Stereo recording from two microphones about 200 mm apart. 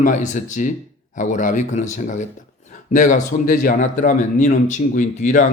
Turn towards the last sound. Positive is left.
turn(degrees=40)  # may be behind; listen again after turning